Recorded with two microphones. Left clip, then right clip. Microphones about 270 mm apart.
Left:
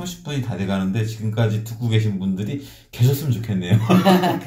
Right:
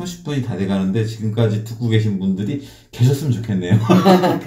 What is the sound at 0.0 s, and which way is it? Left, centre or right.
A man's voice, left.